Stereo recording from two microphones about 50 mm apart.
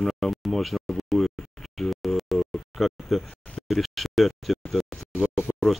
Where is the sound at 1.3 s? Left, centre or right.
Centre.